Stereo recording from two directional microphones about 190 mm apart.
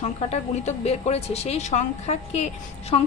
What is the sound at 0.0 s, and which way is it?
A woman's voice, 35° left (ahead or behind).